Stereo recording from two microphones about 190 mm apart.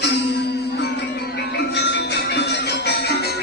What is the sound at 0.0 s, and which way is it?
Music, 60° left (ahead or behind).